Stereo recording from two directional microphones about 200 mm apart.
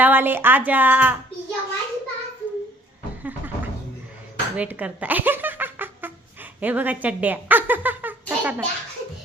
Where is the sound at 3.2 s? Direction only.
10° right (ahead or behind).